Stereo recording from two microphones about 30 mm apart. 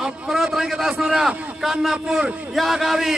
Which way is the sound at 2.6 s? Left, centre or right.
Centre.